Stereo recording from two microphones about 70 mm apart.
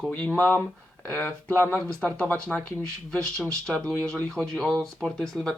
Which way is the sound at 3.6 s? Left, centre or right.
Centre.